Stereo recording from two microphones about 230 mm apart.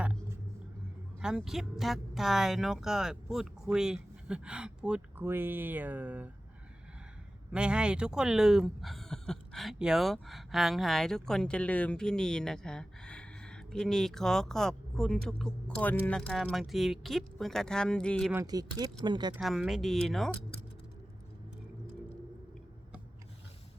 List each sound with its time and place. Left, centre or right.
0.0 s vehicle: centre
1.2 s speech: centre
7.5 s speech: centre
18.3 s speech: centre
19.4 s speech: centre